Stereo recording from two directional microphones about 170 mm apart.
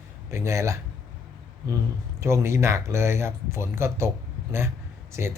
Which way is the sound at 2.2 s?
15° right (ahead or behind).